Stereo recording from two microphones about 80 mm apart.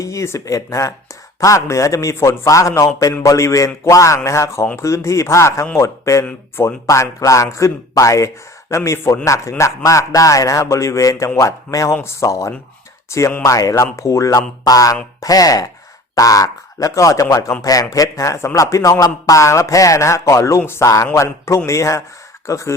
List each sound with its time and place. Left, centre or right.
0.0 s speech: left